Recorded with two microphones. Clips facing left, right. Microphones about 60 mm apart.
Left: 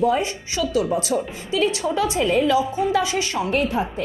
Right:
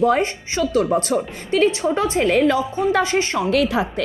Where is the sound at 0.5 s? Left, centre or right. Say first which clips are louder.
Right 3 dB; right.